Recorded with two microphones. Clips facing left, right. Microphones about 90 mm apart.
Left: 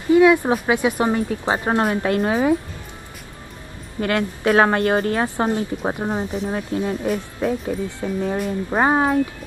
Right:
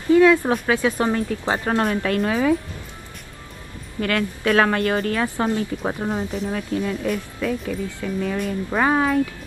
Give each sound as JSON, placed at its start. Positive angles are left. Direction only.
{"t": 0.1, "sound": "a woman's voice", "side_deg": 15}
{"t": 4.0, "sound": "speech", "side_deg": 25}
{"t": 6.5, "sound": "speech", "side_deg": 30}